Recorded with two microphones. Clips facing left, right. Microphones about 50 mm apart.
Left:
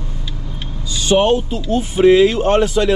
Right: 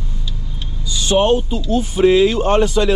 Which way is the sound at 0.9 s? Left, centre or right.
Centre.